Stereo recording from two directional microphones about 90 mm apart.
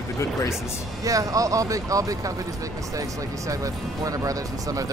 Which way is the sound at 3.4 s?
40° right (ahead or behind).